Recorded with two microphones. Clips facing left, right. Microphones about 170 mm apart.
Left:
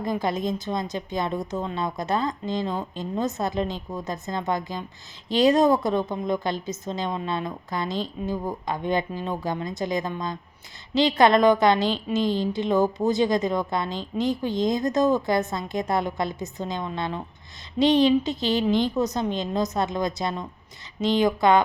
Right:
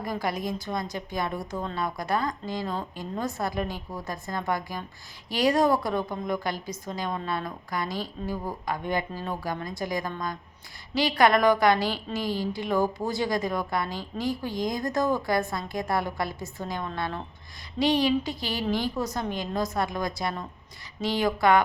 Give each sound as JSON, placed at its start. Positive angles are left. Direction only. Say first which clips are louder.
{"t": 0.0, "sound": "a woman's voice", "louder": "left 4 dB", "side_deg": 20}